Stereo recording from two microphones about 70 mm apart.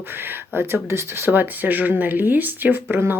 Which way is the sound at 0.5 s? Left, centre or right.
Right.